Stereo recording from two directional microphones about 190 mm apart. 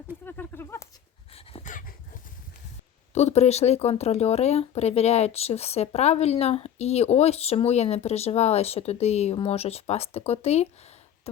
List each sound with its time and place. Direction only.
0.3 s a sound: 10° left (ahead or behind)
1.5 s dog: 40° left (ahead or behind)
3.2 s speech: 35° left (ahead or behind)